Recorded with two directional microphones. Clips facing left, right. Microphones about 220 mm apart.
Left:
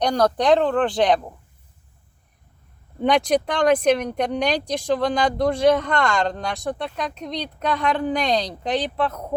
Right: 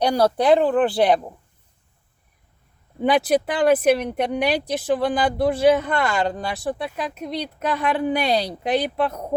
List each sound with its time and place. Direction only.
0.0 s speech: 10° right (ahead or behind)
3.0 s speech: 5° right (ahead or behind)